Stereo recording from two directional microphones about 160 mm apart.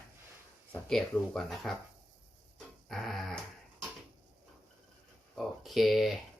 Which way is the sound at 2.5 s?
Centre (ahead or behind).